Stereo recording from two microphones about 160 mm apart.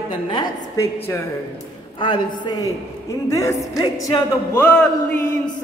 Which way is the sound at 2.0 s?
30° left (ahead or behind).